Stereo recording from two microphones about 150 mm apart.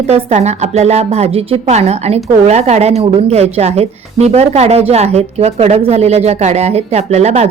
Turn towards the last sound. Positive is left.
turn(degrees=-45)  # may be behind; listen again after turning